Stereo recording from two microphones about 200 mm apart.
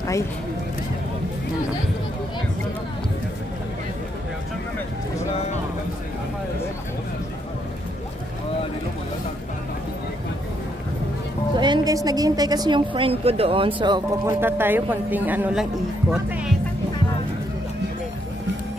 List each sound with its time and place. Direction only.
11.5 s a woman's voice: 20° right (ahead or behind)
14.4 s a woman's voice: 10° right (ahead or behind)